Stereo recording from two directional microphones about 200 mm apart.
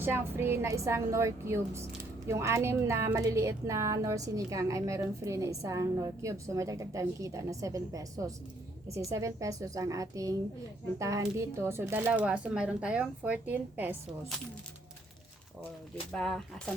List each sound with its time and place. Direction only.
0.0 s a woman's voice: 10° right (ahead or behind)
16.1 s speech: 5° left (ahead or behind)